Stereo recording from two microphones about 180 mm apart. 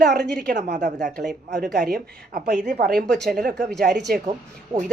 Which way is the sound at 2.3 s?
45° right (ahead or behind).